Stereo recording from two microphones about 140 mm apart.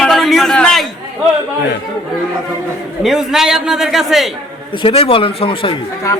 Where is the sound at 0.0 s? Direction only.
Centre (ahead or behind).